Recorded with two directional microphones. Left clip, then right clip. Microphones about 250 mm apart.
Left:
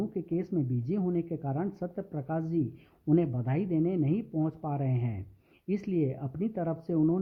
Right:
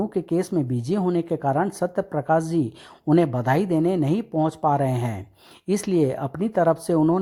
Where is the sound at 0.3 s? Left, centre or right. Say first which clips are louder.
Right 9 dB; centre.